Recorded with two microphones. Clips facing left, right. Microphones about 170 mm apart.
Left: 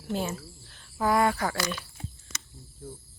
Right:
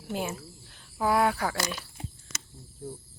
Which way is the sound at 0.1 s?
10° right (ahead or behind).